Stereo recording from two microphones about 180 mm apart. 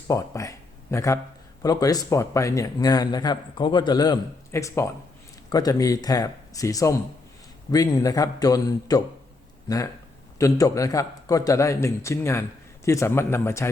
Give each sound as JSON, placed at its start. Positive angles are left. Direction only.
{"t": 0.1, "sound": "a man's voice", "side_deg": 15}